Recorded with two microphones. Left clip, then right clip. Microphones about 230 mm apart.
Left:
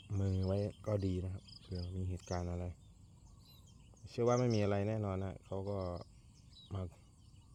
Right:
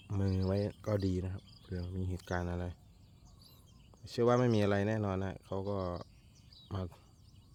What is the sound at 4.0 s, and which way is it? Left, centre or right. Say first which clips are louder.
Speech: right 4 dB; right.